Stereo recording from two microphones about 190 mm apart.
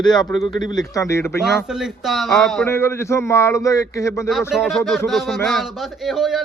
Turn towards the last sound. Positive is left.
turn(degrees=0)  # may be behind; listen again after turning